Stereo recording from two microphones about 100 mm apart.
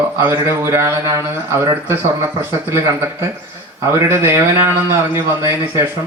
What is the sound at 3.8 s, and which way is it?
A man's voice, 25° right (ahead or behind).